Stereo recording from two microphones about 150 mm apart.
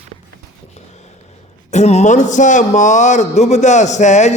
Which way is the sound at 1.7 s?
45° left (ahead or behind).